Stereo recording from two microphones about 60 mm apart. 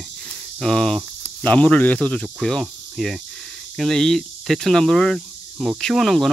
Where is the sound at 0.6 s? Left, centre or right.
Centre.